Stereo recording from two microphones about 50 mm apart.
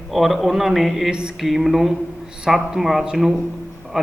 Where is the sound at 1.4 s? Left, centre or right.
Centre.